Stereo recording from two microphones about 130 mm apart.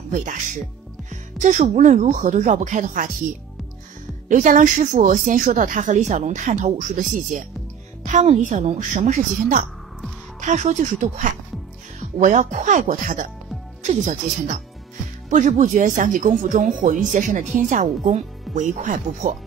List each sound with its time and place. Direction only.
0.1 s speech: 80° right
4.3 s a woman's voice: 80° right
8.0 s speech: 60° right (ahead or behind); by 9.7 s 80° right
10.4 s speech: 65° right (ahead or behind); by 13.3 s 90° right
13.8 s a woman's voice: 70° right (ahead or behind)
17.1 s speech: 70° right (ahead or behind)